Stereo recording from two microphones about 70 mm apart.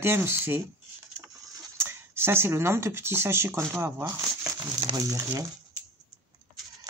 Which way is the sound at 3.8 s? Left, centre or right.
Right.